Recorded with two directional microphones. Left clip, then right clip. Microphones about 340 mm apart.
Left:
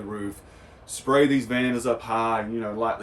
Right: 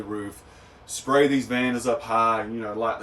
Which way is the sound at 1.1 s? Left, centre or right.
Centre.